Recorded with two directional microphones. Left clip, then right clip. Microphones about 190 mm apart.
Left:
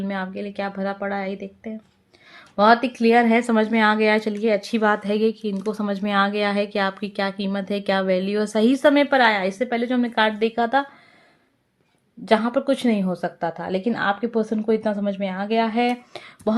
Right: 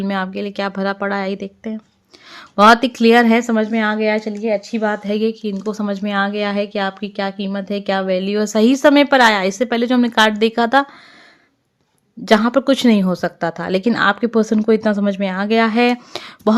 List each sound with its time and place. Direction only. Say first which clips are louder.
0.0 s speech: right 6 dB; 35° right (ahead or behind)
3.3 s speech: right 2 dB; 15° right (ahead or behind); by 10.8 s 40° right (ahead or behind)
12.2 s speech: right 6 dB; 40° right (ahead or behind)